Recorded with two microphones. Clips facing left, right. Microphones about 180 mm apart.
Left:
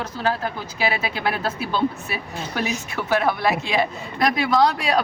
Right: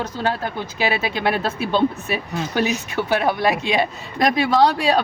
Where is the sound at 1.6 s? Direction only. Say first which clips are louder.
Right 5 dB; 20° right (ahead or behind).